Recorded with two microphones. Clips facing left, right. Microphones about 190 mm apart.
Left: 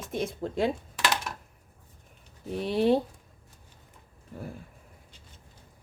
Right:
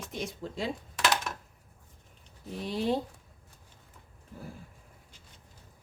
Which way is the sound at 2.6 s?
60° left (ahead or behind).